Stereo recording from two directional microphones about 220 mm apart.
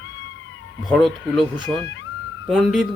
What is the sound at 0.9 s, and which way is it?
Speech, centre (ahead or behind).